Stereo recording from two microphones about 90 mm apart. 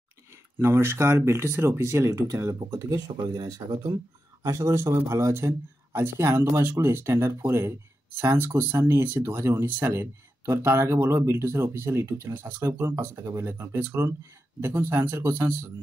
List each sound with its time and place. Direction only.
0.6 s speech: 30° right (ahead or behind)
12.0 s speech: 35° right (ahead or behind)